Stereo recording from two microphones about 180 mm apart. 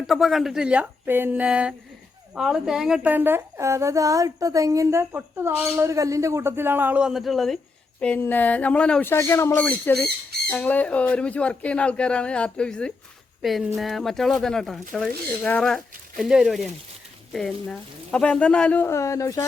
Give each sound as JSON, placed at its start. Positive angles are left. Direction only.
{"t": 0.1, "sound": "a woman's voice", "side_deg": 0}